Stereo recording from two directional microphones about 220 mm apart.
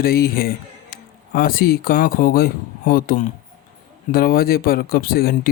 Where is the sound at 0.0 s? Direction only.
45° left (ahead or behind).